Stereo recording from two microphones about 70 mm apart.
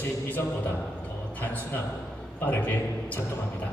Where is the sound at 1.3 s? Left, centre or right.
Left.